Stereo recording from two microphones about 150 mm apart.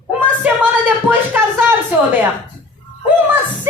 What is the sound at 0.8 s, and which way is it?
Speech, 10° right (ahead or behind).